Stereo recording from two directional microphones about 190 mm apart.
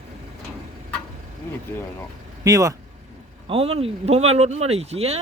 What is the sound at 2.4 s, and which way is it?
Speech, 15° right (ahead or behind).